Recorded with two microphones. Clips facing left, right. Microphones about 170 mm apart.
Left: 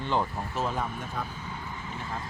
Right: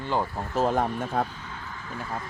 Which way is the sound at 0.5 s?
50° right (ahead or behind).